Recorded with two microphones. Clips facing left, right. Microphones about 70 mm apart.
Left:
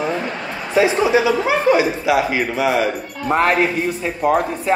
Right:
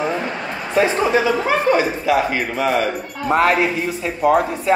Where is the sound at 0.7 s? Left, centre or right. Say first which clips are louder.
Left 1 dB; centre.